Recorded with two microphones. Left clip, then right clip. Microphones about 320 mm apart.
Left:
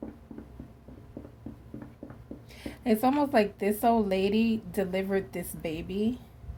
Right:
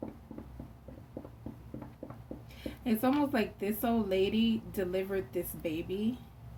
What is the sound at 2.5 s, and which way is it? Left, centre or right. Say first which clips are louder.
A woman's voice: left 7 dB; left.